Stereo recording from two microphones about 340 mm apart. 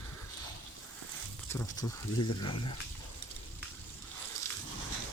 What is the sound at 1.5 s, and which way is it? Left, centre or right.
Speech, centre.